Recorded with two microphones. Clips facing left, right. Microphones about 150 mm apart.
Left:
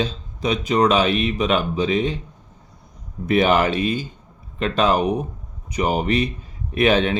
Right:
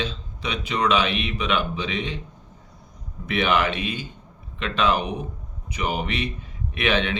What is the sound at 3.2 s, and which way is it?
Speech, 40° left (ahead or behind).